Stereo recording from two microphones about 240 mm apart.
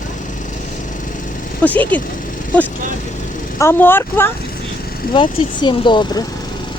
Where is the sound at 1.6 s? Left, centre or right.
Centre.